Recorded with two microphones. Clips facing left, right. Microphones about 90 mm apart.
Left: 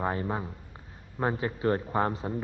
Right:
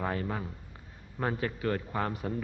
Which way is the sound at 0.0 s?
25° left (ahead or behind).